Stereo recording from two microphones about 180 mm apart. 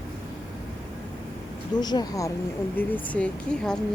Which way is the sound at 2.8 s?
10° left (ahead or behind).